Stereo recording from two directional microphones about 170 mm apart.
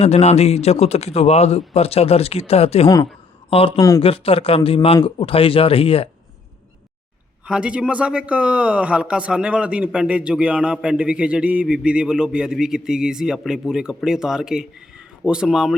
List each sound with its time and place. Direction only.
0.0 s speech: 40° left (ahead or behind)
3.8 s speech: 20° left (ahead or behind)
4.0 s speech: 35° left (ahead or behind)
7.4 s a man's voice: 5° right (ahead or behind)